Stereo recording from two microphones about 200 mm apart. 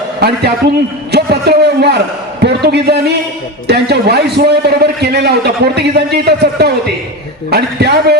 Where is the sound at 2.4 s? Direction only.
55° right (ahead or behind).